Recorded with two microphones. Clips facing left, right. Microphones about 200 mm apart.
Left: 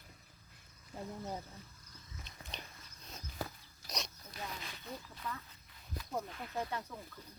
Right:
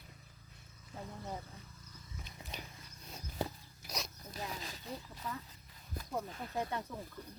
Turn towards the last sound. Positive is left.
turn(degrees=-15)  # may be behind; listen again after turning